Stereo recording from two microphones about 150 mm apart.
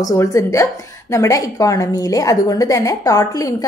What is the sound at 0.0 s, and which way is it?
A woman's voice, 20° left (ahead or behind).